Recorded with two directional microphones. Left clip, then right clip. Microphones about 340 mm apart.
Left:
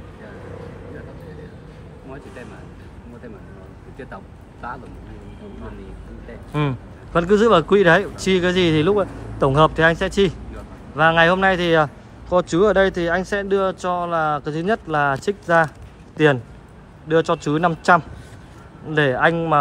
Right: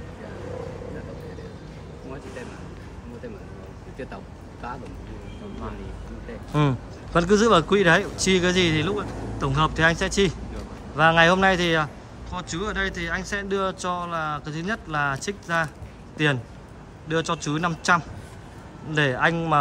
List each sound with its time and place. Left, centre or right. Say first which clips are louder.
6.5 s a man's voice: even; centre